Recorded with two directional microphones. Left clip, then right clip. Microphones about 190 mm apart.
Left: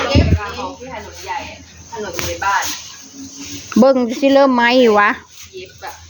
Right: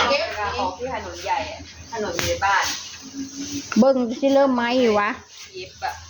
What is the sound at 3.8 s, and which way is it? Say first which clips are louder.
Speech: left 6 dB; 45° left (ahead or behind).